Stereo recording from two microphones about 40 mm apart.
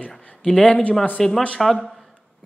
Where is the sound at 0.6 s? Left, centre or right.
Left.